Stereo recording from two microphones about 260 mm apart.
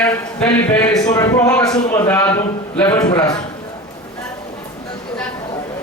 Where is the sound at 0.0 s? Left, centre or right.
Centre.